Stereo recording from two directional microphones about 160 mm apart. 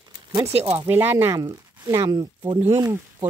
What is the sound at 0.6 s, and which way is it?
A woman's voice, 15° right (ahead or behind).